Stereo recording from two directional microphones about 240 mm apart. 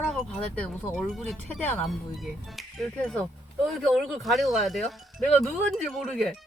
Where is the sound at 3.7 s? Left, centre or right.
Centre.